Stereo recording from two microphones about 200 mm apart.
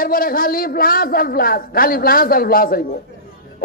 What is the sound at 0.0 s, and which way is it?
A man's voice, 45° left (ahead or behind).